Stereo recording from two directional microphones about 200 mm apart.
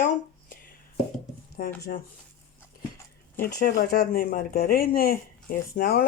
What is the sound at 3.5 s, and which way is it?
Speech, 50° left (ahead or behind).